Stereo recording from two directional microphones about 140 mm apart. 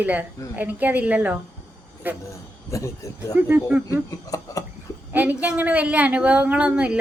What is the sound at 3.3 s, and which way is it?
Speech, 10° right (ahead or behind).